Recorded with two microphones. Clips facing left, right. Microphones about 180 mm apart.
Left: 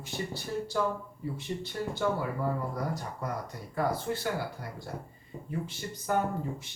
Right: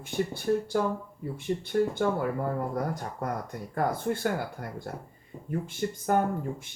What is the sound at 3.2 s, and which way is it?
Speech, 50° right (ahead or behind).